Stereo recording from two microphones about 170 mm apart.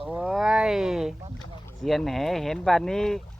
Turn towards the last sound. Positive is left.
turn(degrees=0)  # may be behind; listen again after turning